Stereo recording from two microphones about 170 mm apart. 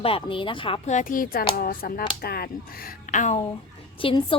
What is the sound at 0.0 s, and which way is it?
A woman's voice, 30° left (ahead or behind).